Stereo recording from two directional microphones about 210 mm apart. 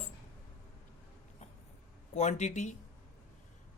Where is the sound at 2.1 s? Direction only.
35° left (ahead or behind).